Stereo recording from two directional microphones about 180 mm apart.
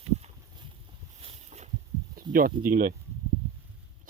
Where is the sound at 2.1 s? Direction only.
50° right (ahead or behind).